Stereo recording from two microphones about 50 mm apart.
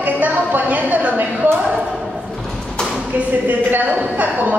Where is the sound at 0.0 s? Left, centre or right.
Right.